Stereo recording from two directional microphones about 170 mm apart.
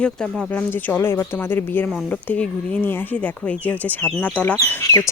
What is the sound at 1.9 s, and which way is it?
Speech, centre (ahead or behind).